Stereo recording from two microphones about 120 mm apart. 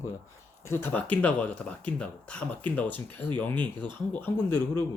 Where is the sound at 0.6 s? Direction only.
20° left (ahead or behind).